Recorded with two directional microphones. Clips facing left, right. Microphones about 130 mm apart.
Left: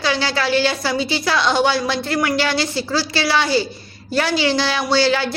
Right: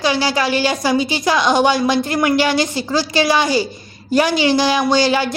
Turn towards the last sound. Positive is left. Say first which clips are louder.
# right 2 dB
turn(degrees=-15)  # may be behind; listen again after turning